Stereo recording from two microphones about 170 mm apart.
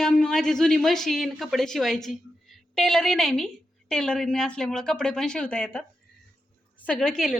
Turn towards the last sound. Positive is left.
turn(degrees=5)  # may be behind; listen again after turning